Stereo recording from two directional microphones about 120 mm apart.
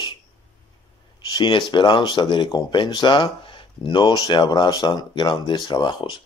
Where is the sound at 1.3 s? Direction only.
40° left (ahead or behind).